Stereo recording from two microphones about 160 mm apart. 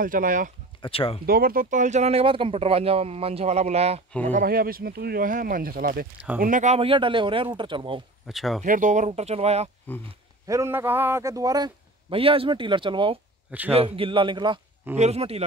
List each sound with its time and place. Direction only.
0.0 s speech: 60° right (ahead or behind)
0.8 s speech: 35° left (ahead or behind)
1.2 s speech: 70° right (ahead or behind); by 4.5 s 50° right (ahead or behind)
4.5 s speech: 65° right (ahead or behind)
6.4 s speech: 50° right (ahead or behind); by 8.0 s 30° right (ahead or behind)
8.3 s speech: centre (ahead or behind)
8.6 s speech: 55° right (ahead or behind)
9.9 s speech: 10° left (ahead or behind)
10.4 s a man's voice: 20° right (ahead or behind)
13.5 s a man's voice: 10° right (ahead or behind)
13.7 s speech: 35° right (ahead or behind)
15.0 s speech: 40° right (ahead or behind)